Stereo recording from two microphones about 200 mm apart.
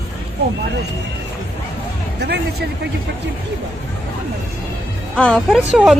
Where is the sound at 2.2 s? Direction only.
55° right (ahead or behind).